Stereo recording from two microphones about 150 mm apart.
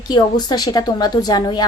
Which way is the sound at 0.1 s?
30° left (ahead or behind).